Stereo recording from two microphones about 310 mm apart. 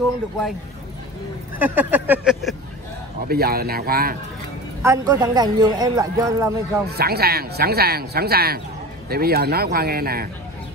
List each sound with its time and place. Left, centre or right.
1.6 s a sound: centre
3.3 s speech: right
4.8 s speech: centre
6.9 s speech: right